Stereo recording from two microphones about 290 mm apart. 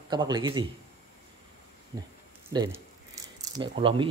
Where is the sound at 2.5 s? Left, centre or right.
Centre.